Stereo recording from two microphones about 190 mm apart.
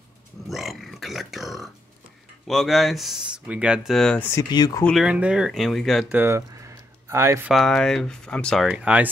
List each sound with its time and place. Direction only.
0.5 s grunt: centre (ahead or behind)
2.4 s speech: centre (ahead or behind)
4.4 s speech: 20° left (ahead or behind)
4.8 s speech: centre (ahead or behind)
7.5 s speech: centre (ahead or behind)